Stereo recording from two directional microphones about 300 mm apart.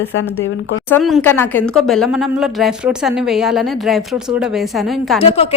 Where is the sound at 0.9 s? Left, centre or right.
Centre.